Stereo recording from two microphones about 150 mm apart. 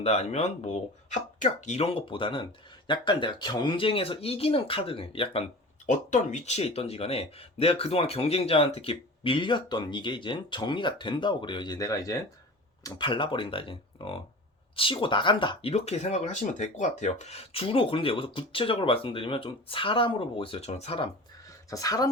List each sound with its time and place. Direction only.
0.0 s speech: 45° left (ahead or behind)
5.8 s speech: 55° left (ahead or behind); by 12.1 s 20° left (ahead or behind)
12.8 s speech: 30° left (ahead or behind)
15.7 s speech: 45° left (ahead or behind)
21.7 s speech: 25° left (ahead or behind)